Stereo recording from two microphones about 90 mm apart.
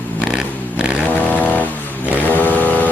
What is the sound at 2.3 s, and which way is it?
Vehicle, 20° left (ahead or behind).